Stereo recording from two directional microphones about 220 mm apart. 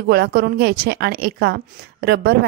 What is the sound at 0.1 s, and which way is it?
A woman's voice, 45° right (ahead or behind).